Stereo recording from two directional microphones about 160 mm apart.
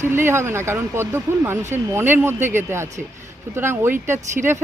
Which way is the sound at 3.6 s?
15° right (ahead or behind).